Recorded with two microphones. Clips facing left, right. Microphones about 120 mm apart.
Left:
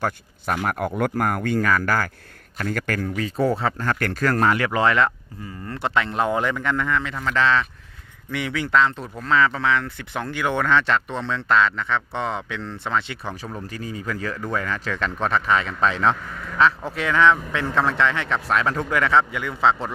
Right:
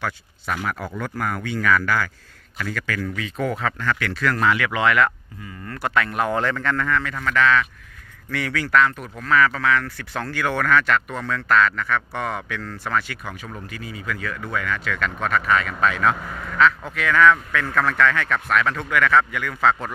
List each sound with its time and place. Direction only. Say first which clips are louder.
0.0 s speech: left 3 dB; 50° left (ahead or behind); by 19.9 s 25° left (ahead or behind)